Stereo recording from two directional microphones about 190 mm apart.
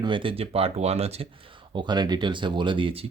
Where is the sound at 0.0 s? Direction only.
25° right (ahead or behind).